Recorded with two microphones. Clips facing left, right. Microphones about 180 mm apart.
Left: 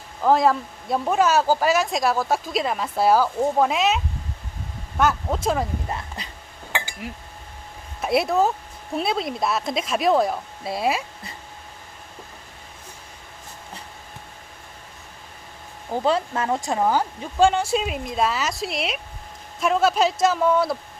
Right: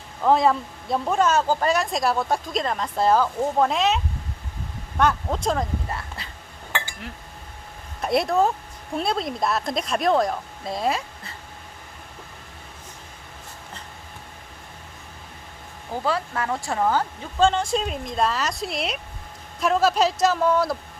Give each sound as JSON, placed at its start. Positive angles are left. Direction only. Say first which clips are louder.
{"t": 0.2, "sound": "speech", "louder": "left 1 dB", "side_deg": 0}
{"t": 5.9, "sound": "speech", "louder": "left 2 dB", "side_deg": 20}
{"t": 6.7, "sound": "a sound", "louder": "left 2 dB", "side_deg": 10}
{"t": 8.0, "sound": "speech", "louder": "even", "side_deg": 5}
{"t": 16.0, "sound": "speech", "louder": "left 3 dB", "side_deg": 20}